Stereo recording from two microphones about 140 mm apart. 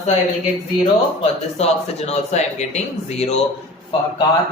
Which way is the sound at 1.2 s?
50° left (ahead or behind).